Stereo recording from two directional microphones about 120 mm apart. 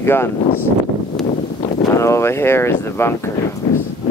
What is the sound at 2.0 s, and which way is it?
Speech, 25° left (ahead or behind).